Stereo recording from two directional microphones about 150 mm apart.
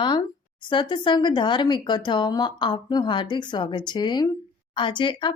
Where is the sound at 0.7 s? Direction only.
30° left (ahead or behind).